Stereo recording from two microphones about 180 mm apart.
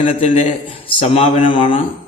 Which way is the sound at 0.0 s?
40° left (ahead or behind).